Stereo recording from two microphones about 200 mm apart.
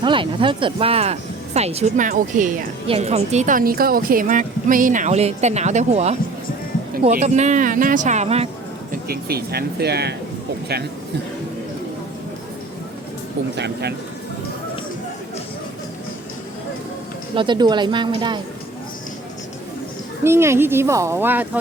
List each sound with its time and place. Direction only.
0.0 s a woman's voice: 25° right (ahead or behind); by 2.5 s 40° right (ahead or behind)
2.8 s a woman's voice: 30° right (ahead or behind)
8.9 s speech: 50° right (ahead or behind)
17.3 s speech: 25° right (ahead or behind)
20.2 s speech: 10° right (ahead or behind)